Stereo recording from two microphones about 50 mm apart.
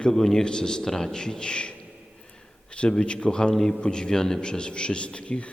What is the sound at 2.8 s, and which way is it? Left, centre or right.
A man's voice, centre.